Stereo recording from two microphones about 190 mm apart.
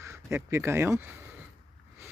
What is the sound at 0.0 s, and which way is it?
Speech, 15° right (ahead or behind).